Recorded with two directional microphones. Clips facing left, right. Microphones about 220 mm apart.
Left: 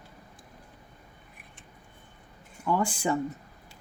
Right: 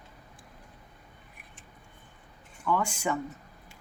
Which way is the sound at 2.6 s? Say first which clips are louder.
Left 2 dB; 30° left (ahead or behind).